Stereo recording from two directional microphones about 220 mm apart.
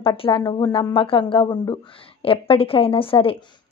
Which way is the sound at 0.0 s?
25° left (ahead or behind).